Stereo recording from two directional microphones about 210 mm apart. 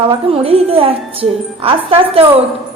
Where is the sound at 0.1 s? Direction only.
25° right (ahead or behind).